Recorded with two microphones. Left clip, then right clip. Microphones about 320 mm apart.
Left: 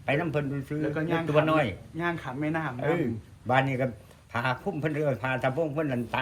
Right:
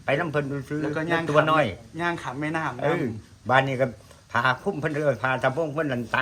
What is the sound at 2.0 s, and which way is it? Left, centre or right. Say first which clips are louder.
Speech: right 3 dB; right.